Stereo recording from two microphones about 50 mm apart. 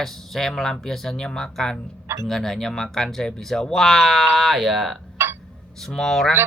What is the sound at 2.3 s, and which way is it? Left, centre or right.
Speech, centre.